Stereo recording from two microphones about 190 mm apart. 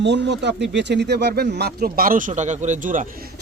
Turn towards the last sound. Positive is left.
turn(degrees=-45)  # may be behind; listen again after turning